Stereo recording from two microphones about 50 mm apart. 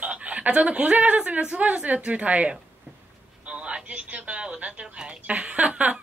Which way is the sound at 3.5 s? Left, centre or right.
Right.